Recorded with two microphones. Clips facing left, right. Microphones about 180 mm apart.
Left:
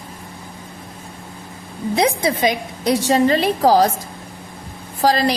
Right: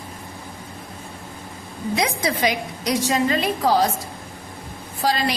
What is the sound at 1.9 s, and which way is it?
A woman's voice, 30° left (ahead or behind).